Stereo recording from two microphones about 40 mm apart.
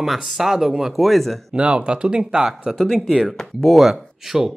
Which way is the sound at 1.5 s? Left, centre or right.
Right.